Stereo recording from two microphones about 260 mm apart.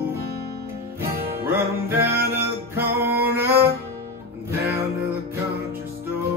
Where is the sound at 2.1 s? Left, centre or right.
Right.